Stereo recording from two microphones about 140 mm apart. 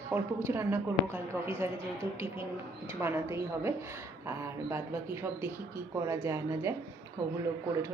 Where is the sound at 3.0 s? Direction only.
20° right (ahead or behind).